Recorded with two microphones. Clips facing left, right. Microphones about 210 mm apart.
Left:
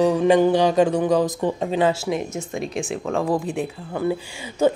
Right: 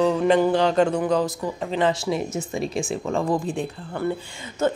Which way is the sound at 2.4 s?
Centre (ahead or behind).